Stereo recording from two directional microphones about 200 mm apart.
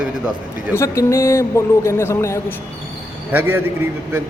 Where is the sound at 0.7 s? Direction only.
15° left (ahead or behind).